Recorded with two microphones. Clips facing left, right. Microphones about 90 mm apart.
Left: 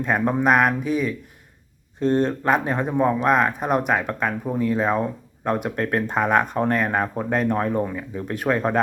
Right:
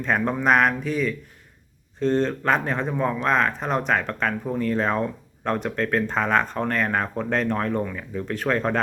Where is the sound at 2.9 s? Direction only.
25° left (ahead or behind).